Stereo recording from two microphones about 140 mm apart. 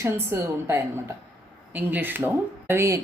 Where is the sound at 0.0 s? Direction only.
15° right (ahead or behind).